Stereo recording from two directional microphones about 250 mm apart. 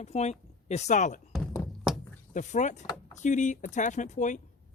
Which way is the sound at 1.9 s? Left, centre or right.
Centre.